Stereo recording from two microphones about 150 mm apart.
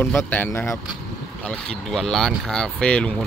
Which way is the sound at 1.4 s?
5° left (ahead or behind).